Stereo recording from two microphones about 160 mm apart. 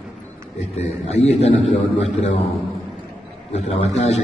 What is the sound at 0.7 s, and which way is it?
A man's voice, 40° left (ahead or behind).